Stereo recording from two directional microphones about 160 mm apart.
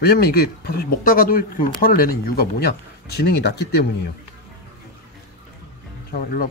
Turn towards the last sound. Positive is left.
turn(degrees=60)  # may be behind; listen again after turning